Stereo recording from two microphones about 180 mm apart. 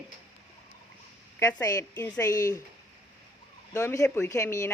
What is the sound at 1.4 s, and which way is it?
Speech, 15° left (ahead or behind).